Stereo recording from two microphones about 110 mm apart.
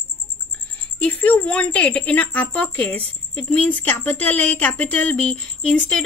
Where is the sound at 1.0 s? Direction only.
15° left (ahead or behind).